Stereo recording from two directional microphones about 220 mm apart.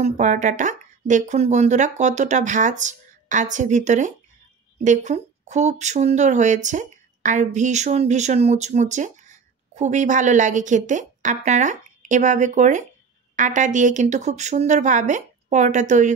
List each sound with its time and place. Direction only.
0.0 s speech: 35° right (ahead or behind)